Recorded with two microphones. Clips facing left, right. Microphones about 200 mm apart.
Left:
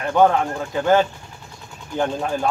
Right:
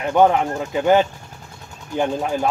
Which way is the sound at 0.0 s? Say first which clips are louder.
Right 1 dB; 15° right (ahead or behind).